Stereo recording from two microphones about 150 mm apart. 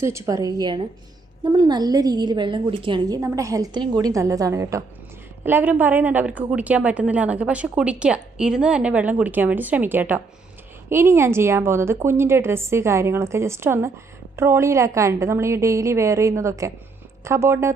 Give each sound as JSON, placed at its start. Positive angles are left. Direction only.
{"t": 0.0, "sound": "a woman's voice", "side_deg": -20}
{"t": 3.2, "sound": "a woman's voice", "side_deg": -20}